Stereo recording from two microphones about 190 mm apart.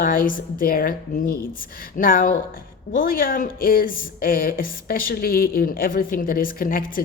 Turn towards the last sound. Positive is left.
turn(degrees=50)  # may be behind; listen again after turning